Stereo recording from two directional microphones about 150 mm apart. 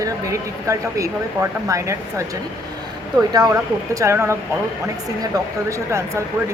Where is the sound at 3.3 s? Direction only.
25° right (ahead or behind).